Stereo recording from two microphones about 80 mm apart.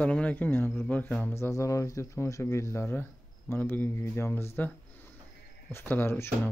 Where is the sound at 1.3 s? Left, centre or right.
Left.